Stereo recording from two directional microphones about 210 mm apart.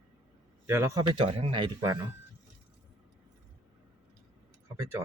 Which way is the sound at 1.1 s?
25° right (ahead or behind).